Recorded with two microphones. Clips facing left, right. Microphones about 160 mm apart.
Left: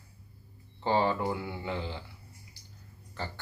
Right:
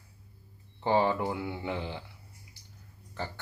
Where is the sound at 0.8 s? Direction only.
15° right (ahead or behind).